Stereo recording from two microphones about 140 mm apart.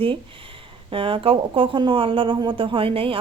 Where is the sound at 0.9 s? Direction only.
40° right (ahead or behind).